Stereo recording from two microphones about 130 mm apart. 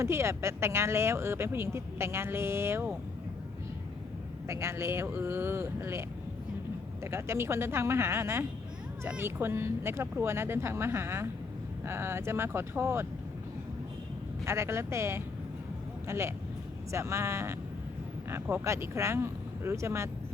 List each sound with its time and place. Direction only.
0.0 s speech: 20° right (ahead or behind)
4.4 s speech: 20° right (ahead or behind)
14.4 s speech: 20° right (ahead or behind)